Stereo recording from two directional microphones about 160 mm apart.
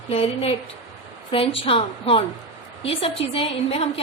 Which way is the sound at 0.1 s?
35° left (ahead or behind).